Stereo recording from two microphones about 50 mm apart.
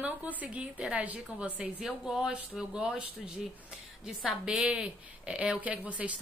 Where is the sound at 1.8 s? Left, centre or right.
Centre.